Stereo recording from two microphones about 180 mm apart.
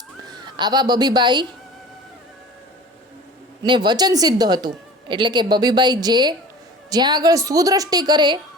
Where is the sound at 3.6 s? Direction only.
25° right (ahead or behind).